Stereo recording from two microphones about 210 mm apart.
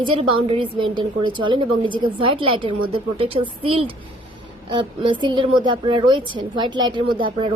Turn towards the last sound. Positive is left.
turn(degrees=-25)  # may be behind; listen again after turning